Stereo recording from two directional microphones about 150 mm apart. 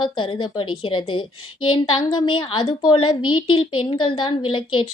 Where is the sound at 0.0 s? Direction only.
30° left (ahead or behind).